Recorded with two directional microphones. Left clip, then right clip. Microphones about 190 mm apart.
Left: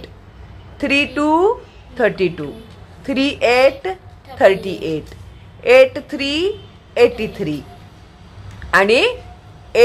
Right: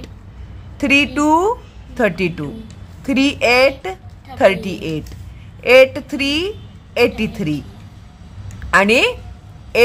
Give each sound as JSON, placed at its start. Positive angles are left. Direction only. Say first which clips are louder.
{"t": 0.7, "sound": "a woman's voice", "louder": "right 2 dB", "side_deg": -25}
{"t": 8.6, "sound": "a woman's voice", "louder": "even", "side_deg": -25}